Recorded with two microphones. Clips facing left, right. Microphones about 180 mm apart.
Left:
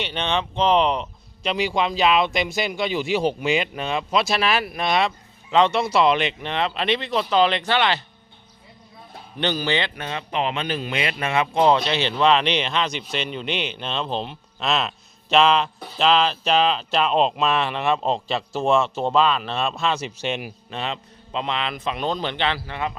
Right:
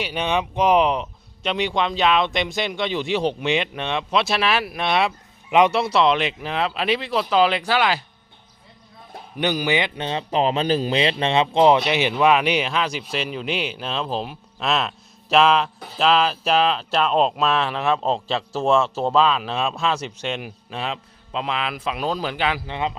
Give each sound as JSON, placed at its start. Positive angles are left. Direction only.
{"t": 0.0, "sound": "speech", "side_deg": -10}
{"t": 5.5, "sound": "speech", "side_deg": -15}
{"t": 5.7, "sound": "speech", "side_deg": 0}
{"t": 9.4, "sound": "speech", "side_deg": -10}
{"t": 9.9, "sound": "speech", "side_deg": -25}
{"t": 22.6, "sound": "speech", "side_deg": -20}